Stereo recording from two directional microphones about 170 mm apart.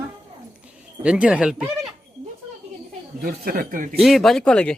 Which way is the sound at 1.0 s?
5° right (ahead or behind).